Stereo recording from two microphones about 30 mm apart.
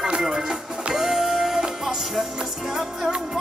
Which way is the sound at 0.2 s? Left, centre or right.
Centre.